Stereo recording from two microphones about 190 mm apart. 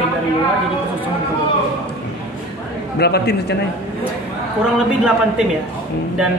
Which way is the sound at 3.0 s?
60° left (ahead or behind).